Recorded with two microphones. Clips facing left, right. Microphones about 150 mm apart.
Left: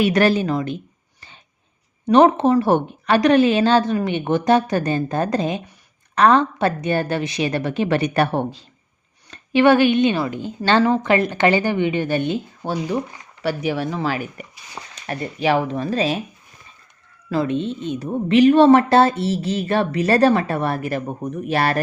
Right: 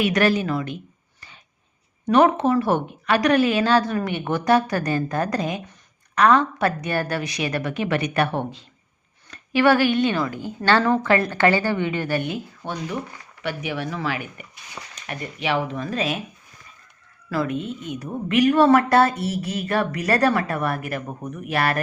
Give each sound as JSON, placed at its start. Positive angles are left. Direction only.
{"t": 0.0, "sound": "speech", "side_deg": 30}
{"t": 2.0, "sound": "a woman's voice", "side_deg": 30}
{"t": 9.3, "sound": "a woman's voice", "side_deg": 25}
{"t": 13.4, "sound": "speech", "side_deg": 35}
{"t": 17.2, "sound": "a woman's voice", "side_deg": 25}